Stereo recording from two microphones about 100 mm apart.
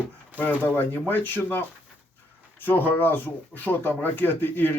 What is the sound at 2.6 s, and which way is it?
Speech, 20° left (ahead or behind).